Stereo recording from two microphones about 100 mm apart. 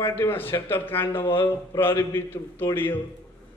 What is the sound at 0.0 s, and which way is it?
Speech, 20° left (ahead or behind).